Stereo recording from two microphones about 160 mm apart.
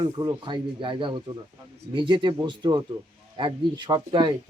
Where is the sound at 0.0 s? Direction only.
25° right (ahead or behind).